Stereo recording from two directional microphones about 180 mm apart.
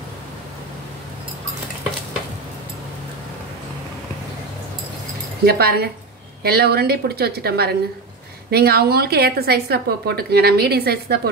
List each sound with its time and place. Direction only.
5.4 s a woman's voice: 60° right (ahead or behind)